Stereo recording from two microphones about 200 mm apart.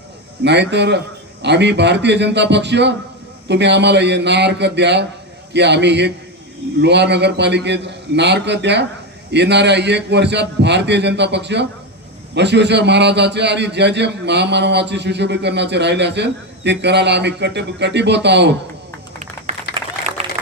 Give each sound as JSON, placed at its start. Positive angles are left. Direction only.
{"t": 0.4, "sound": "a man's voice", "side_deg": -60}